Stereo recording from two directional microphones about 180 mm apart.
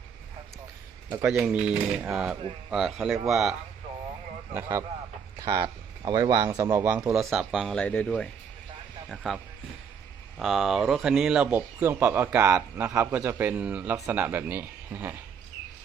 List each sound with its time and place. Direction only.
1.2 s speech: 5° right (ahead or behind)
5.4 s speech: 20° right (ahead or behind)
7.2 s speech: centre (ahead or behind)